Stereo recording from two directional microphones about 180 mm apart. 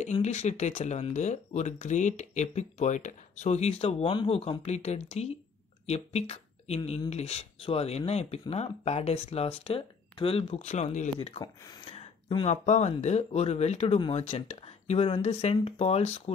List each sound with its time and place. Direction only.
0.0 s speech: 40° left (ahead or behind); by 11.9 s 20° left (ahead or behind)
11.9 s a sound: 30° left (ahead or behind)
12.4 s speech: 40° left (ahead or behind)